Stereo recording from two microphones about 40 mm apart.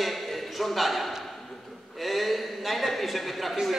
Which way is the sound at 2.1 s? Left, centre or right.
Centre.